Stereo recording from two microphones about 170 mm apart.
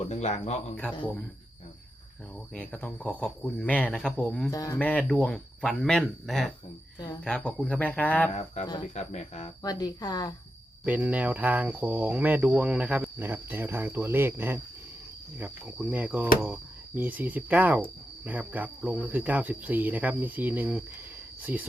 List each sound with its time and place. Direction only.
0.1 s speech: 45° left (ahead or behind)
2.5 s speech: 10° left (ahead or behind)
4.5 s speech: 20° left (ahead or behind)
4.8 s speech: 10° left (ahead or behind)
8.3 s speech: 40° left (ahead or behind)
9.6 s speech: 25° left (ahead or behind)
10.8 s speech: 10° right (ahead or behind)